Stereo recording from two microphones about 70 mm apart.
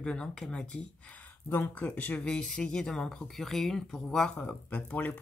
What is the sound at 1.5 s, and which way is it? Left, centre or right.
Speech, left.